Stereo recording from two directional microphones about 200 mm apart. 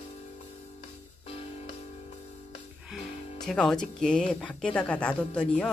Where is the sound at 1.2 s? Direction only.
30° left (ahead or behind).